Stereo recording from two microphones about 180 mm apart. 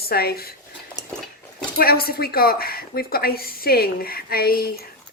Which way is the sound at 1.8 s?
55° left (ahead or behind).